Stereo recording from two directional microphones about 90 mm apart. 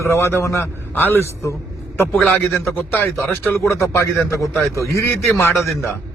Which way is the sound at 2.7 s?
20° left (ahead or behind).